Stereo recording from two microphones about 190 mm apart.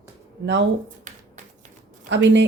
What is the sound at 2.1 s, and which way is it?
Speech, 70° right (ahead or behind).